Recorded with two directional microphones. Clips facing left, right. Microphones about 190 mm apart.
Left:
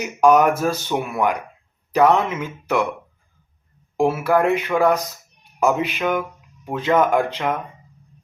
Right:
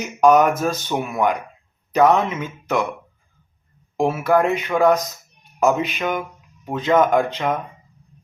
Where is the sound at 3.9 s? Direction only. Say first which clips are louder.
Even; 10° left (ahead or behind).